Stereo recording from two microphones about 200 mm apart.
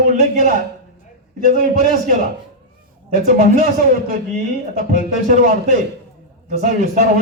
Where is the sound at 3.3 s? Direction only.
40° right (ahead or behind).